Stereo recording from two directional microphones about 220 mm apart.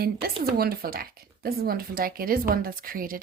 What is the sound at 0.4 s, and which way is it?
Speech, 45° right (ahead or behind).